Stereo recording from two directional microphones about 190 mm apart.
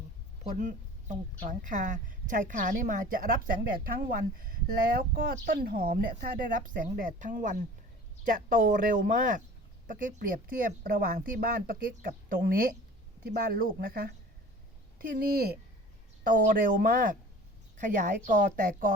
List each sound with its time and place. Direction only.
0.5 s a woman's voice: 40° right (ahead or behind)